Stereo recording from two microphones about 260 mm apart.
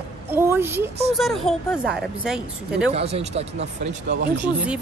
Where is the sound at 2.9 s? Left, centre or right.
Right.